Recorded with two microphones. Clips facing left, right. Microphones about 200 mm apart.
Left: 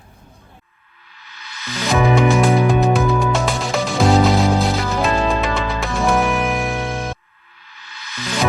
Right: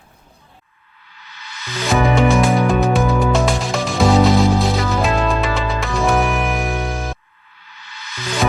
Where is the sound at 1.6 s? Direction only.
15° right (ahead or behind).